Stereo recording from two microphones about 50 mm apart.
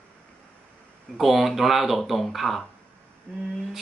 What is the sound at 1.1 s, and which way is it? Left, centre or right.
Speech, centre.